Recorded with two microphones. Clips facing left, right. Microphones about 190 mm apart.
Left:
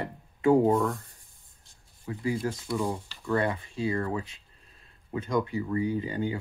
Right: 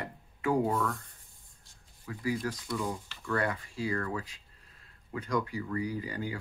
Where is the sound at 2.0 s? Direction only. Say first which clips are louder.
Left 3 dB; 25° left (ahead or behind).